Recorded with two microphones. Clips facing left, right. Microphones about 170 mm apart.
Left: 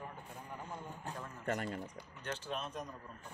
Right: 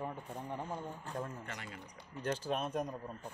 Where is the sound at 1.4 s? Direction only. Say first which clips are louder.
Left 9 dB; 45° left (ahead or behind).